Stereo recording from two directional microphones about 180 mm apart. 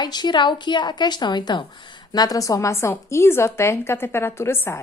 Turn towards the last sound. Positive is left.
turn(degrees=15)  # may be behind; listen again after turning